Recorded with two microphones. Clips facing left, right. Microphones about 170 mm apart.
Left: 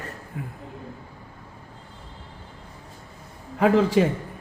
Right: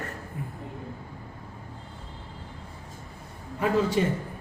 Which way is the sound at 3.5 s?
90° left.